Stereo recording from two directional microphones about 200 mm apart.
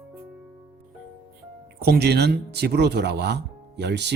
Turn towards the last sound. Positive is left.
turn(degrees=-60)  # may be behind; listen again after turning